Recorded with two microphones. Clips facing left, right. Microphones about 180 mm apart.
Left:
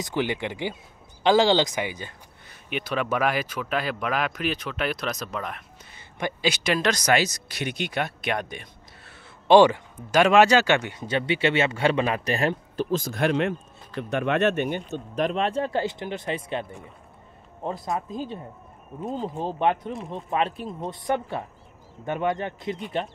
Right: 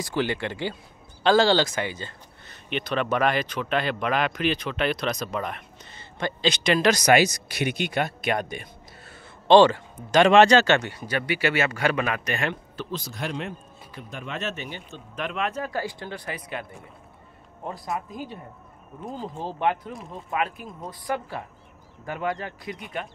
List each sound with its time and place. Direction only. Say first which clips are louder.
0.0 s speech: even; 15° left (ahead or behind); by 5.9 s centre (ahead or behind)
5.9 s speech: even; 10° left (ahead or behind)
9.5 s speech: even; 10° left (ahead or behind); by 14.8 s 55° left (ahead or behind)
15.1 s speech: left 5 dB; 35° left (ahead or behind)
17.6 s speech: left 3 dB; 20° left (ahead or behind)